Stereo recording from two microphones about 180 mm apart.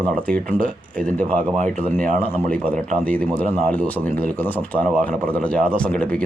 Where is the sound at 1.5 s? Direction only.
45° right (ahead or behind).